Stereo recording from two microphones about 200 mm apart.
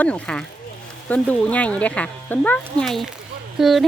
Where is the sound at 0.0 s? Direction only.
5° left (ahead or behind).